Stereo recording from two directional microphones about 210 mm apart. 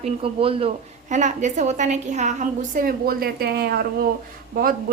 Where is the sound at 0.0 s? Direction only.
25° right (ahead or behind).